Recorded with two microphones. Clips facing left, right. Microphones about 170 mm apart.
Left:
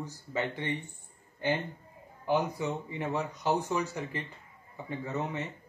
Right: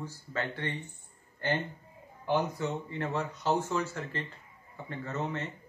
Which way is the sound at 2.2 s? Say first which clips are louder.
Left 1 dB; 10° left (ahead or behind).